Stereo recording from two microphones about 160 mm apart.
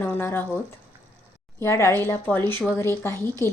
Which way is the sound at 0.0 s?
15° left (ahead or behind).